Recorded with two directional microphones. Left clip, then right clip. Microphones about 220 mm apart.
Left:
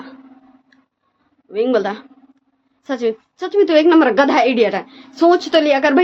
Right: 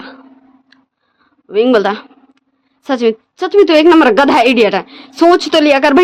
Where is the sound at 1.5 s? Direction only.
50° right (ahead or behind).